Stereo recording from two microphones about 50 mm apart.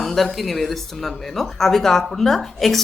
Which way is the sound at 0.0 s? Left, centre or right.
Centre.